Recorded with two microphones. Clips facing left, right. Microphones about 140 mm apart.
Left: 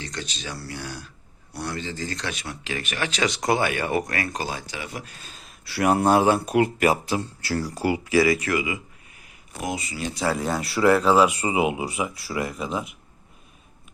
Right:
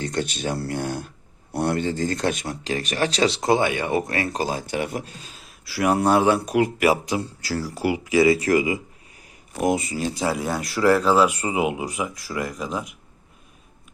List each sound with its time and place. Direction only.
0.0 s speech: 55° right (ahead or behind); by 4.6 s 35° right (ahead or behind)
4.6 s speech: 55° right (ahead or behind)
5.6 s speech: centre (ahead or behind)
8.0 s speech: 20° right (ahead or behind)
8.4 s speech: 35° right (ahead or behind)
9.6 s speech: 50° right (ahead or behind)
10.0 s speech: 35° right (ahead or behind)
10.2 s speech: 10° right (ahead or behind)